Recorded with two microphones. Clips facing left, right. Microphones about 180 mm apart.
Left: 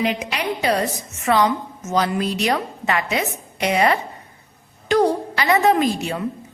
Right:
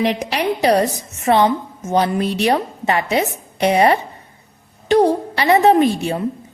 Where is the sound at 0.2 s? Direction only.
35° right (ahead or behind).